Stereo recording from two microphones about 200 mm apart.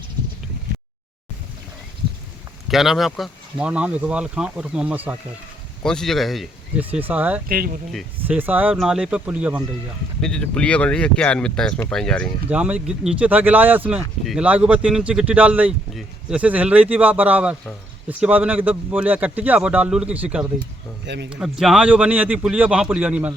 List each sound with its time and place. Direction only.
2.6 s speech: centre (ahead or behind)
7.4 s speech: 45° right (ahead or behind)
7.9 s speech: 10° right (ahead or behind)
10.2 s speech: 5° left (ahead or behind)
12.5 s speech: 5° right (ahead or behind)